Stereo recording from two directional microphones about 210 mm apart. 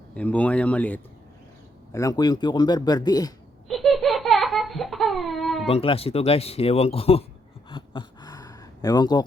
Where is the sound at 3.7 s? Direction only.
Centre (ahead or behind).